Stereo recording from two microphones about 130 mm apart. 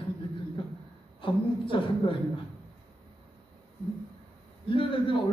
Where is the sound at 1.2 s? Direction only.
40° left (ahead or behind).